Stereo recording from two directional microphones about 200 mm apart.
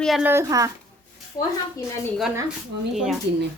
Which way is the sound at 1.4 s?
20° left (ahead or behind).